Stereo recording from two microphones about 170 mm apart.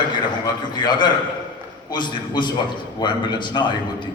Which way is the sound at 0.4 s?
25° left (ahead or behind).